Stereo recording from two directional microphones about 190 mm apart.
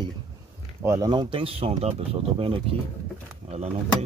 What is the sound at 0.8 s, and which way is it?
Speech, 20° right (ahead or behind).